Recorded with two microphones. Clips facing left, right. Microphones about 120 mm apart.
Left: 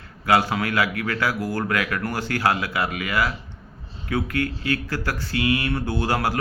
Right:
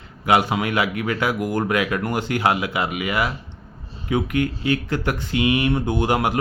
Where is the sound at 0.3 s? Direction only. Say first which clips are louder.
Right 2 dB; 20° right (ahead or behind).